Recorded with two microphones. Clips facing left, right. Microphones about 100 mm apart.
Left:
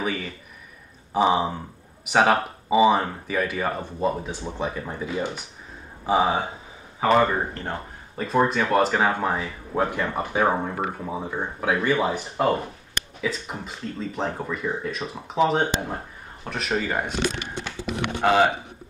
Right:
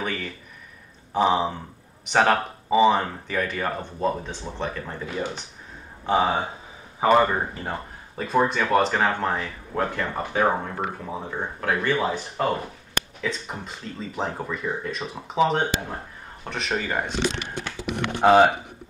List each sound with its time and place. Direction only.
0.0 s speech: 5° left (ahead or behind)
6.0 s speech: 5° left (ahead or behind)
7.0 s speech: 10° right (ahead or behind)
18.2 s speech: 20° right (ahead or behind)